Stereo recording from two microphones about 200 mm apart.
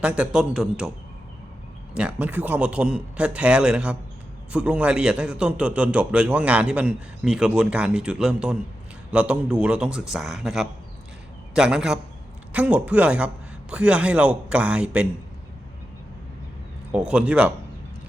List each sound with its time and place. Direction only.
0.0 s a man's voice: 5° right (ahead or behind)
2.0 s a man's voice: 5° right (ahead or behind)
16.9 s a man's voice: 5° right (ahead or behind)